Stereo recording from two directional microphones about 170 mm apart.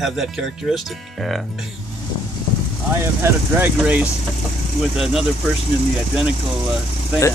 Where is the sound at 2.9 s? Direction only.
15° right (ahead or behind).